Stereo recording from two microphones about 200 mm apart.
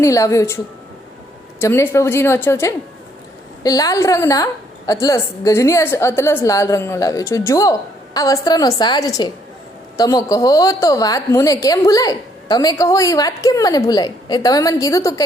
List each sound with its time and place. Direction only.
0.0 s a woman's voice: 15° left (ahead or behind)
1.6 s a woman's voice: 10° left (ahead or behind)